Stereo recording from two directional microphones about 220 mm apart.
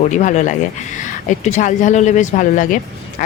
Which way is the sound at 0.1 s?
35° left (ahead or behind).